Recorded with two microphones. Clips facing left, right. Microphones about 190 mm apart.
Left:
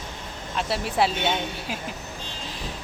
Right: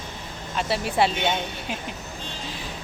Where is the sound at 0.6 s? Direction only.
Centre (ahead or behind).